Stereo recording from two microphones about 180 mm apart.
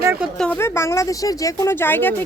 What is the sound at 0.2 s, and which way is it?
A woman's voice, 5° left (ahead or behind).